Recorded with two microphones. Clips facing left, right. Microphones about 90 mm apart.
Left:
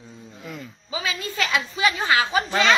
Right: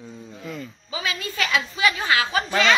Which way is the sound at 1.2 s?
20° left (ahead or behind).